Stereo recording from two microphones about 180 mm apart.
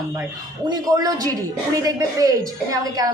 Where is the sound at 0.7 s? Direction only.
20° right (ahead or behind).